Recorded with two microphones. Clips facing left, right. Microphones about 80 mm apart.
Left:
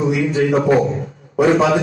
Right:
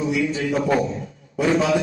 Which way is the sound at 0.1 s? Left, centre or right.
Left.